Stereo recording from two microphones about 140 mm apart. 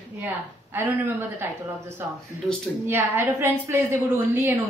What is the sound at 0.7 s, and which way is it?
Speech, 15° right (ahead or behind).